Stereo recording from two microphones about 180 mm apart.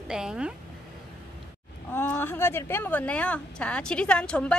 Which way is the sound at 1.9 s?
10° left (ahead or behind).